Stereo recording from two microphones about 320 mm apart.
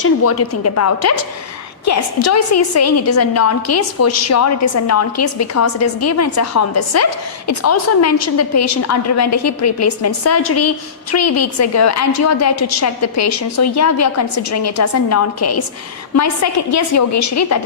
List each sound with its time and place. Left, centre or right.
0.0 s a woman's voice: left